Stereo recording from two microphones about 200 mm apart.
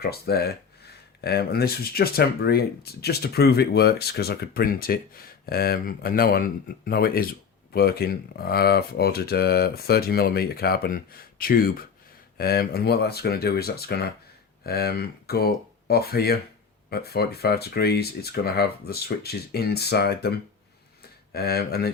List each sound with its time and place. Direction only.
0.0 s speech: 50° left (ahead or behind)